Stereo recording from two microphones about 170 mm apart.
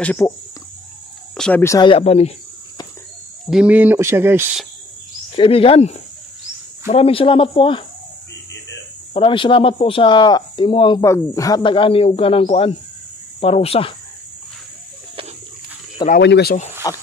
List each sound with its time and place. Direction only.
0.0 s speech: 10° left (ahead or behind)
1.3 s a sound: 5° left (ahead or behind)
1.6 s speech: 15° left (ahead or behind)
1.9 s speech: 35° left (ahead or behind)
3.4 s speech: 5° right (ahead or behind)
5.3 s speech: 30° left (ahead or behind)
9.1 s a man's voice: 30° left (ahead or behind)
16.2 s speech: 80° left
16.8 s a man's voice: 25° left (ahead or behind)